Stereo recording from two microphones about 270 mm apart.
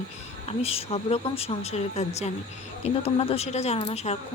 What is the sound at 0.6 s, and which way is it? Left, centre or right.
Speech, left.